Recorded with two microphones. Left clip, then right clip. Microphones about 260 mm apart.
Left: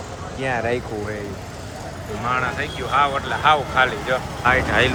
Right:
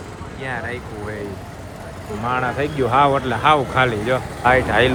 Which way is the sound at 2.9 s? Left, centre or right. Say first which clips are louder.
Right 2 dB; centre.